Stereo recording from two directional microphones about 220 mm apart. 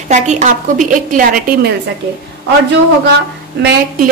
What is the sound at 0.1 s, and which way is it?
A woman's voice, 30° right (ahead or behind).